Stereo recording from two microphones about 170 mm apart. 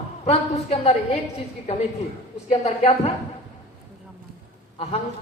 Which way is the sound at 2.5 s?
35° left (ahead or behind).